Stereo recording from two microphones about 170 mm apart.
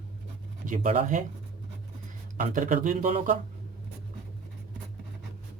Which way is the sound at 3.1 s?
35° right (ahead or behind).